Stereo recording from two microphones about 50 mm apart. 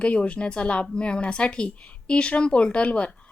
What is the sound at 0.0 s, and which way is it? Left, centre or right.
A woman's voice, left.